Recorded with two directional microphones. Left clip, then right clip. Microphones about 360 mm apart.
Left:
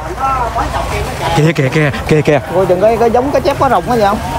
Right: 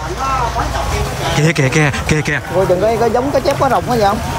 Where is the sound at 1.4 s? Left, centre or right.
Centre.